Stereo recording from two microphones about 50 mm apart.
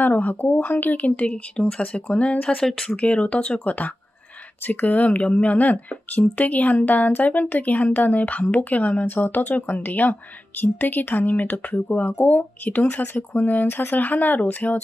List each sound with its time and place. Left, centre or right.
0.0 s speech: left
2.6 s speech: centre
3.0 s speech: left